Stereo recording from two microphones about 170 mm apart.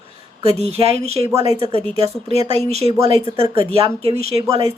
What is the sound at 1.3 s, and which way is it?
Speech, 20° right (ahead or behind).